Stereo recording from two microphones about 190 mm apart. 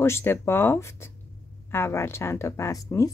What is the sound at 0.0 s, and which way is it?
A woman's voice, 15° left (ahead or behind).